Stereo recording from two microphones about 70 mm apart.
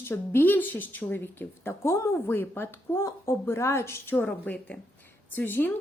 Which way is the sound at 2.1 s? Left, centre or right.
Left.